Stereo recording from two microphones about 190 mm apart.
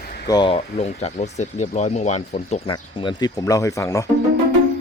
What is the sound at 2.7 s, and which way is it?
Speech, 20° left (ahead or behind).